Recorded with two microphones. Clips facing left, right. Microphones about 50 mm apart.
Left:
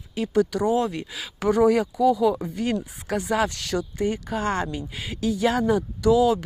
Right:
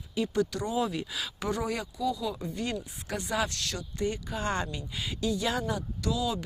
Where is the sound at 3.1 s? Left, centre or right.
Left.